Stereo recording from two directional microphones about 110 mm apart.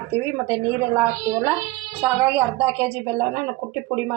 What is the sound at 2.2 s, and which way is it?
A woman's voice, 20° right (ahead or behind).